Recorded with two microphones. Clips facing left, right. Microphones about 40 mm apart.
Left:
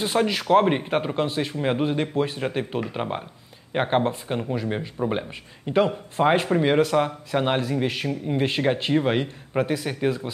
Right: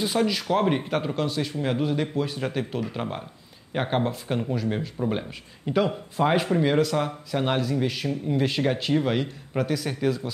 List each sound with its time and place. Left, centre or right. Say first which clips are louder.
0.0 s speech: left 1 dB; left
6.1 s speech: left 2 dB; left